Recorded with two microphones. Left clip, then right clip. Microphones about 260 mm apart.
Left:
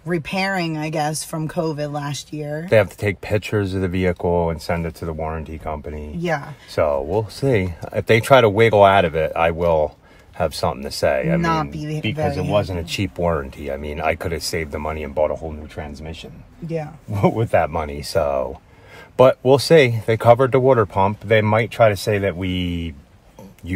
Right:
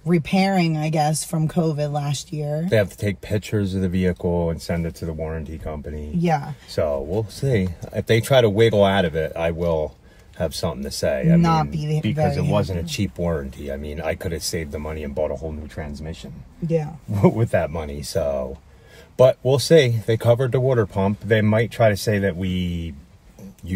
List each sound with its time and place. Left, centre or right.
0.3 s speech: centre
2.7 s speech: left
11.8 s speech: centre
12.5 s speech: left
17.6 s speech: left
19.5 s speech: left